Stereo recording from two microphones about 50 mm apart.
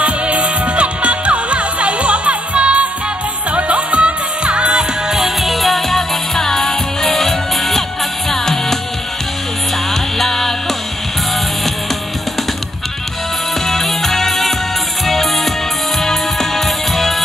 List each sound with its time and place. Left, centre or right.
0.0 s music: right
5.1 s music: centre
10.1 s music: centre
13.7 s music: centre